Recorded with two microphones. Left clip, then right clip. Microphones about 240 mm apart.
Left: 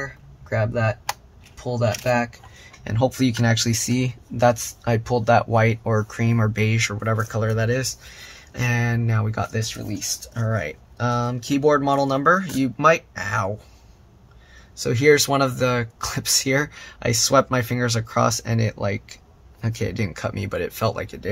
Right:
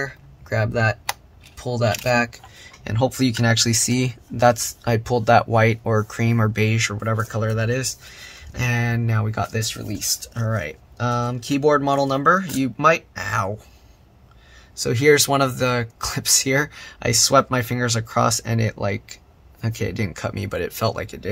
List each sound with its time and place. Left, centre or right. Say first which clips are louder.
0.0 s speech: right 4 dB; right; by 13.5 s centre
14.8 s speech: right 1 dB; centre